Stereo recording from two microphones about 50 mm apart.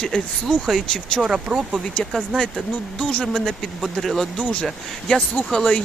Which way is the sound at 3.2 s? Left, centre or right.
Centre.